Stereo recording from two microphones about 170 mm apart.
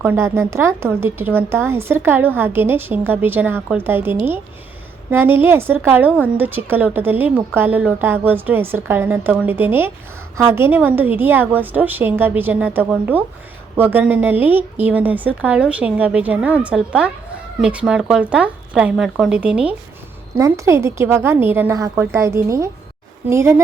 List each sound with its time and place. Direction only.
0.0 s a woman's voice: 10° right (ahead or behind)
20.3 s a woman's voice: 20° right (ahead or behind)